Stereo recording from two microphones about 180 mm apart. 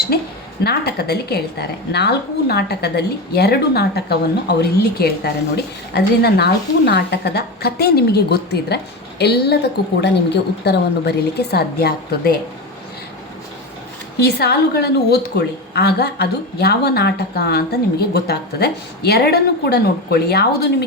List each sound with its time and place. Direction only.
0.1 s a sound: 60° left (ahead or behind)
0.6 s a woman's voice: 60° left (ahead or behind)
14.2 s a woman's voice: 65° left (ahead or behind)